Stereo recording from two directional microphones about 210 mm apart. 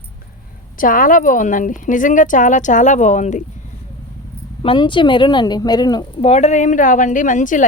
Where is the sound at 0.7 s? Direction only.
40° left (ahead or behind).